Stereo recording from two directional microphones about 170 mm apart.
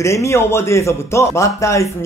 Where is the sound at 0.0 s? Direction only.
15° left (ahead or behind).